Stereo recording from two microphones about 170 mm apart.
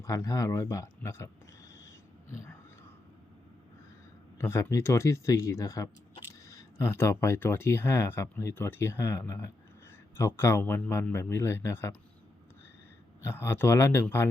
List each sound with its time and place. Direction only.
0.0 s speech: 20° left (ahead or behind)
4.4 s speech: 15° left (ahead or behind)
13.2 s speech: 15° left (ahead or behind)